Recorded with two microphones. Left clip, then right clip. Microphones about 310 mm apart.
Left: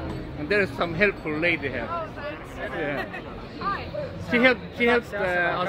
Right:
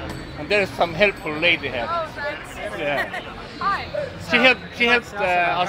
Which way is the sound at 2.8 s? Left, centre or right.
Centre.